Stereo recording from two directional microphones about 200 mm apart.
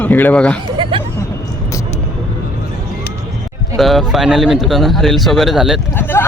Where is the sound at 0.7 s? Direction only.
25° right (ahead or behind).